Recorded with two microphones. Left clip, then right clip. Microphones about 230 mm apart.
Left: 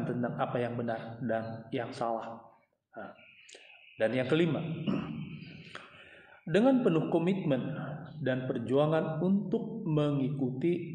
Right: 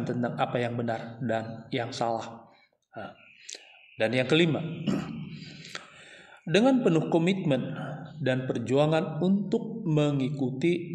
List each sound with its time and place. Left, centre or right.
0.2 s a man's voice: right